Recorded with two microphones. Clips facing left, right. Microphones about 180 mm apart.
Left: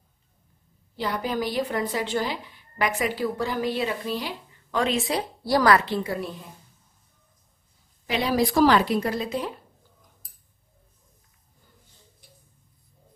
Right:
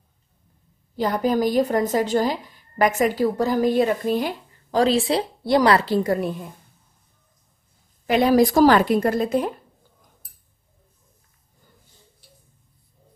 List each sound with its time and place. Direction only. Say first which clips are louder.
0.9 s speech: right 7 dB; 45° right (ahead or behind)
8.1 s speech: right 7 dB; 50° right (ahead or behind)